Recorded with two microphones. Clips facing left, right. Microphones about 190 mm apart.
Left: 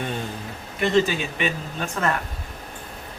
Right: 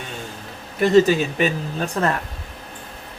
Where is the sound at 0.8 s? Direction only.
40° right (ahead or behind).